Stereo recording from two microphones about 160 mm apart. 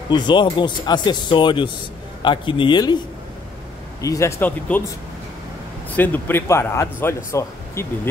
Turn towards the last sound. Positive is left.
turn(degrees=15)  # may be behind; listen again after turning